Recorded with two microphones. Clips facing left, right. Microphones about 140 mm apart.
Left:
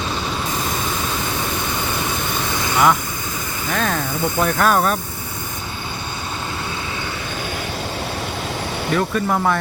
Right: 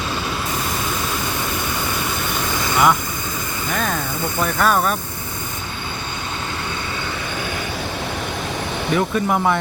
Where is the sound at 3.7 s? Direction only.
5° right (ahead or behind).